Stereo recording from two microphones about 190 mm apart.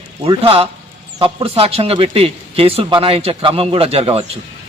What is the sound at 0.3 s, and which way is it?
A man's voice, 30° right (ahead or behind).